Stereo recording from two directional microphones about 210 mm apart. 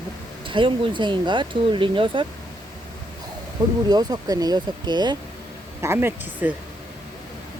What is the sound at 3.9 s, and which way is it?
Speech, 20° right (ahead or behind).